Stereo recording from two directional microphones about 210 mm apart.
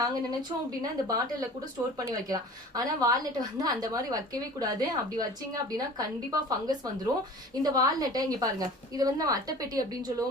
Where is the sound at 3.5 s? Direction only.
15° right (ahead or behind).